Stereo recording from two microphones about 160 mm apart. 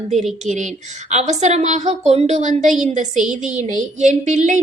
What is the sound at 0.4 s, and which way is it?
A woman's voice, 50° right (ahead or behind).